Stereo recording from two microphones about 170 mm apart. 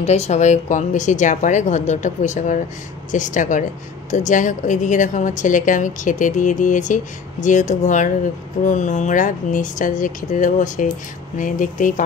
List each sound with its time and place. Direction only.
0.0 s a woman's voice: 40° left (ahead or behind)